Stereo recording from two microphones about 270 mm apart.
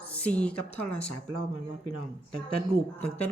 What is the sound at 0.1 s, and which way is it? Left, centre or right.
Speech, centre.